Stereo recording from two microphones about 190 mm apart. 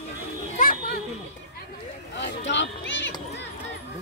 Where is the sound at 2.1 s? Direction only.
70° left (ahead or behind).